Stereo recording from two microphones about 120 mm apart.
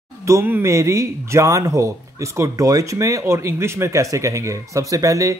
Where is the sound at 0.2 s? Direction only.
25° right (ahead or behind).